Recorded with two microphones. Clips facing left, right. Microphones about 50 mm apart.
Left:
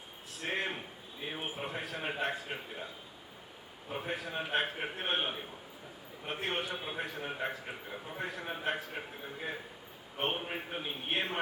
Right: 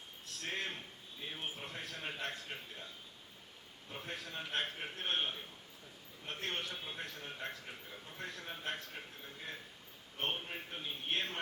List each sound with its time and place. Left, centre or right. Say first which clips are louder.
0.3 s a man's voice: left 5 dB; centre